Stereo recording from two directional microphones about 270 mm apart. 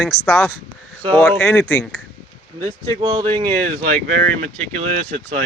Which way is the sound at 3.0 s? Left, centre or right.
Centre.